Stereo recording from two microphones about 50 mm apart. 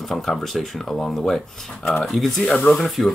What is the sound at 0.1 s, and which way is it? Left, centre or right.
Speech, centre.